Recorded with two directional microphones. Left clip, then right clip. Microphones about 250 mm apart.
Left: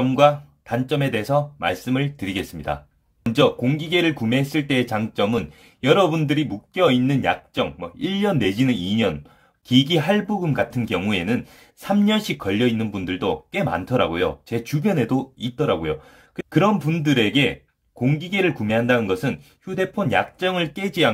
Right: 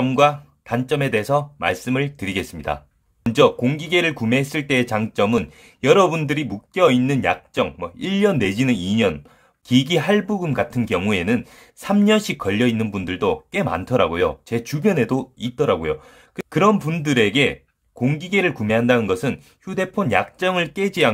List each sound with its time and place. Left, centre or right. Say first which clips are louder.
0.0 s speech: even; right